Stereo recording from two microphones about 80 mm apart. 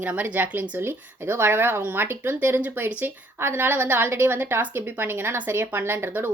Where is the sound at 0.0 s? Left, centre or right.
Centre.